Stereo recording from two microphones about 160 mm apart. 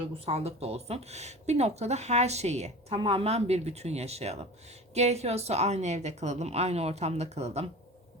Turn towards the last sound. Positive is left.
turn(degrees=-45)  # may be behind; listen again after turning